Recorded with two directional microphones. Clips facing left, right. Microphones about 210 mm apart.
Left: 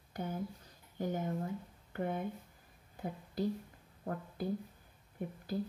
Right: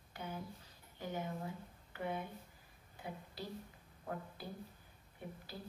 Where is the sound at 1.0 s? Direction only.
45° left (ahead or behind).